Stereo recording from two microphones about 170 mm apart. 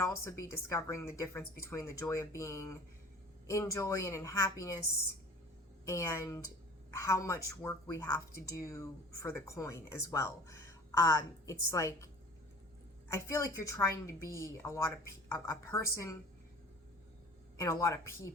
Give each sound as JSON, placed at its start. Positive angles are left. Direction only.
{"t": 0.0, "sound": "speech", "side_deg": 15}
{"t": 5.8, "sound": "speech", "side_deg": 15}
{"t": 13.1, "sound": "speech", "side_deg": 20}
{"t": 17.6, "sound": "speech", "side_deg": 20}